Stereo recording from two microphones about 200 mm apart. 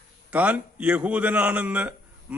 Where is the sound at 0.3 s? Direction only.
5° right (ahead or behind).